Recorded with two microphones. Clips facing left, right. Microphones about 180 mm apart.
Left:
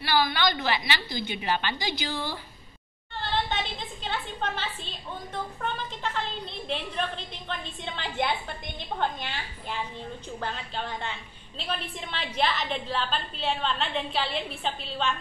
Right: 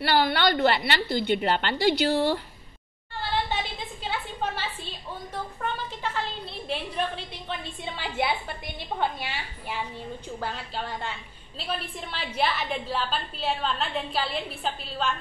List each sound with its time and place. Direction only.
0.0 s a woman's voice: 65° right (ahead or behind)
4.0 s a sound: 10° right (ahead or behind)
6.7 s a woman's voice: 10° right (ahead or behind)